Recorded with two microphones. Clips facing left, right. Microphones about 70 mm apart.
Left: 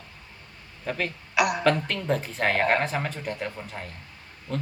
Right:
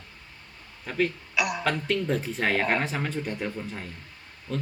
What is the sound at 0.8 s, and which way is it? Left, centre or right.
Speech, centre.